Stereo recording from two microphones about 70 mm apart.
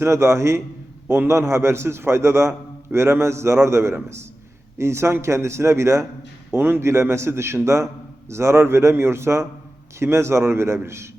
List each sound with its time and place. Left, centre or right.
0.0 s a man's voice: right